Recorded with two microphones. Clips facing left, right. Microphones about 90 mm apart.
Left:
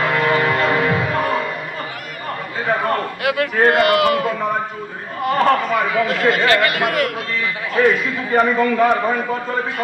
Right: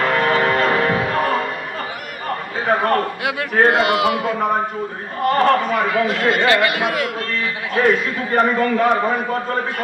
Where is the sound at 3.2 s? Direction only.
20° right (ahead or behind).